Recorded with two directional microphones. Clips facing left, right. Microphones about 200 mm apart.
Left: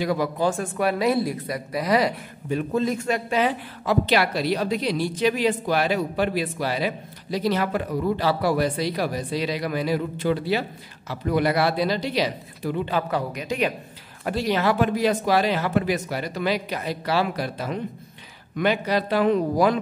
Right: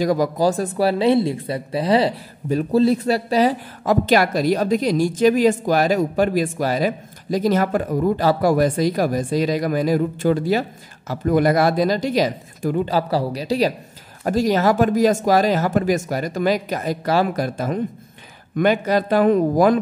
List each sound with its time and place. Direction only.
0.0 s speech: 40° right (ahead or behind)